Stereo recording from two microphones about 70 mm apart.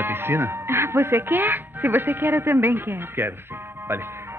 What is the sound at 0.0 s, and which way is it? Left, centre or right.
Speech, right.